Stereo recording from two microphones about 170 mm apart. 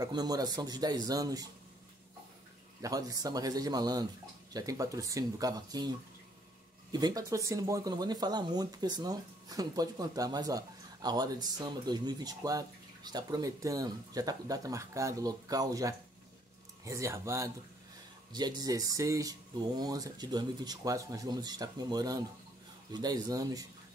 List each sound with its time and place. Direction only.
0.0 s speech: 25° right (ahead or behind)
2.8 s speech: 20° right (ahead or behind)